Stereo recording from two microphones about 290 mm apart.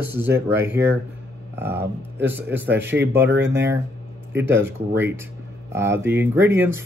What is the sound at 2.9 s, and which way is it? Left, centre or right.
Speech, right.